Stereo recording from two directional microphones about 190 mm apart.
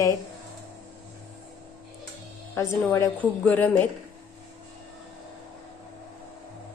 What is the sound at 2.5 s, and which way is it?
A woman's voice, 15° left (ahead or behind).